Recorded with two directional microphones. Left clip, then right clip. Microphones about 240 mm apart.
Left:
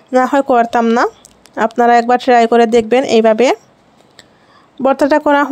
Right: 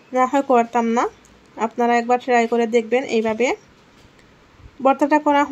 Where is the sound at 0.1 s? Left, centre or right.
Left.